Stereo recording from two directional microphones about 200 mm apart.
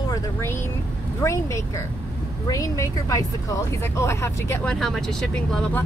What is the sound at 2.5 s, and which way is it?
Speech, 15° left (ahead or behind).